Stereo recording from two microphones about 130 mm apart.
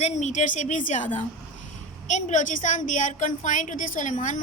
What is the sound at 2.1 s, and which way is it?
A woman's voice, 70° left (ahead or behind).